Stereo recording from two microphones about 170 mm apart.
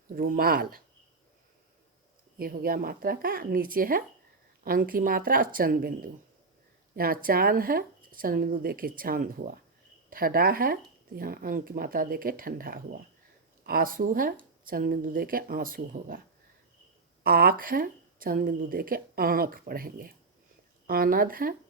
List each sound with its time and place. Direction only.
0.1 s a woman's voice: 55° right (ahead or behind)
2.4 s a woman's voice: 60° right (ahead or behind)
17.2 s a woman's voice: 60° right (ahead or behind)